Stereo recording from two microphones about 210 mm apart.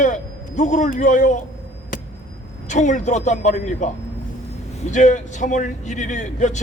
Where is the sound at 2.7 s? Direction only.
35° left (ahead or behind).